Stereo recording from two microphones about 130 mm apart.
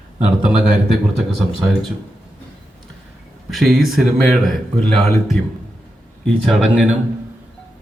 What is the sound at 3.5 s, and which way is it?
Speech, centre (ahead or behind).